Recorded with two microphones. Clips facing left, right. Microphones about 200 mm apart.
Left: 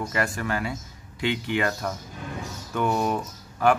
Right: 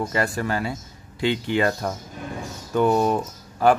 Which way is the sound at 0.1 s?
30° right (ahead or behind).